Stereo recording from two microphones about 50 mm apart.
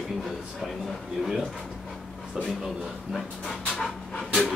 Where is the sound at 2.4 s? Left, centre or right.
Centre.